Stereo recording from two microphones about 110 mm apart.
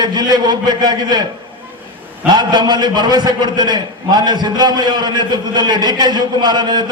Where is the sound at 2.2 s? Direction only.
40° right (ahead or behind).